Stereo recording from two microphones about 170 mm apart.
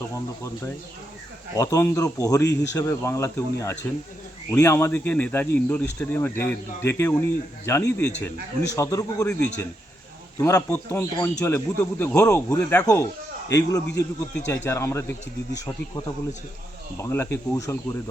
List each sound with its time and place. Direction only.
1.5 s speech: 20° left (ahead or behind)
10.3 s speech: 15° left (ahead or behind)
17.0 s speech: 15° left (ahead or behind)